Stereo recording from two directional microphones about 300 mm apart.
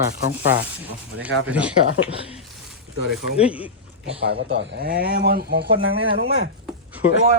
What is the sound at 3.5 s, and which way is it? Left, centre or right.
Speech, centre.